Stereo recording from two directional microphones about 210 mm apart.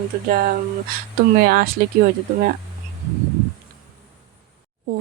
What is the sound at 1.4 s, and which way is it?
Speech, 45° right (ahead or behind).